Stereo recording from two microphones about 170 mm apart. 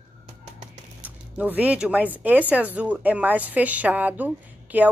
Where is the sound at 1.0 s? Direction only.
10° right (ahead or behind).